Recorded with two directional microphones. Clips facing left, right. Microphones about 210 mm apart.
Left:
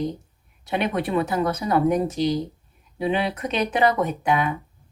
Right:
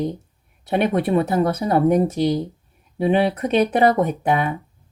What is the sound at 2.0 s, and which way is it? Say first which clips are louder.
Speech: right 3 dB; 60° right (ahead or behind).